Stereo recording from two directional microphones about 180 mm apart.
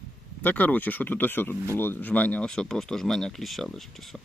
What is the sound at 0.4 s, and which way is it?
Speech, 10° left (ahead or behind).